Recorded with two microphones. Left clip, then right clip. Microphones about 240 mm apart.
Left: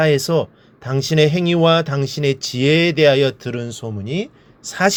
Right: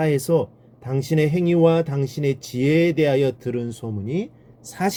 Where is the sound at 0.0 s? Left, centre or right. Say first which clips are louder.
Left 4 dB; left.